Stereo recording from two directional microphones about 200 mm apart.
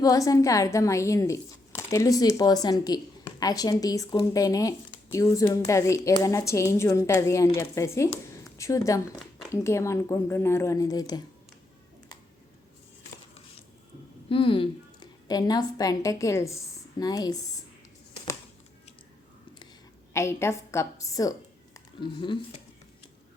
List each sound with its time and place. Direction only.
0.0 s speech: 15° left (ahead or behind)
14.3 s a woman's voice: 25° left (ahead or behind)
20.1 s speech: 15° left (ahead or behind)